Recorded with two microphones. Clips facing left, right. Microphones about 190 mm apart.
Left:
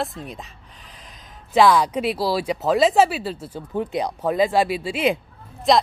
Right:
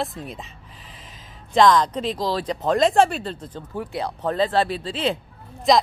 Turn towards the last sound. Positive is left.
turn(degrees=0)  # may be behind; listen again after turning